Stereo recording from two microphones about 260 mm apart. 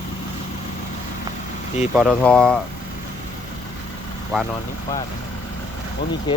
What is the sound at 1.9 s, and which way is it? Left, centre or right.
Speech, centre.